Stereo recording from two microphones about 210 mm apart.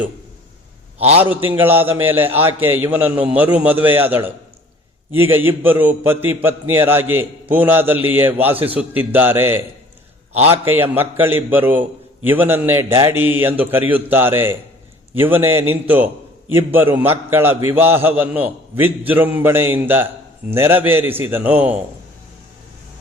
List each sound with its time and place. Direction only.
0.9 s a man's voice: 30° right (ahead or behind)
1.4 s a man's voice: 10° right (ahead or behind)